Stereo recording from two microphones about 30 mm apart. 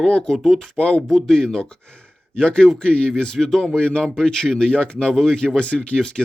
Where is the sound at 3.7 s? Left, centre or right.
Left.